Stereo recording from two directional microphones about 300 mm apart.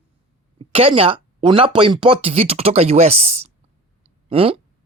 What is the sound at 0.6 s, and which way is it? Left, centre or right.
Speech, centre.